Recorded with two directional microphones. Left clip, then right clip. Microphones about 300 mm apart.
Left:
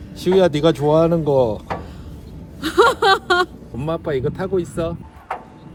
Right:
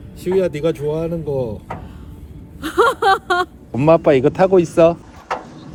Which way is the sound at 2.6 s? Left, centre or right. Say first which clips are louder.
Even; centre.